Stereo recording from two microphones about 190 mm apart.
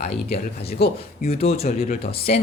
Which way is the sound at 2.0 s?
30° left (ahead or behind).